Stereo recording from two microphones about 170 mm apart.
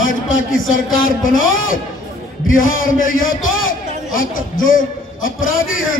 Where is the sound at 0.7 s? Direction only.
50° left (ahead or behind).